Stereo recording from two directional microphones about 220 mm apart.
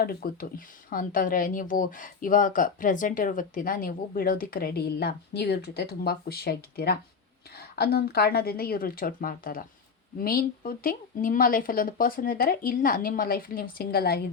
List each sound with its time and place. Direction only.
0.0 s speech: 40° left (ahead or behind)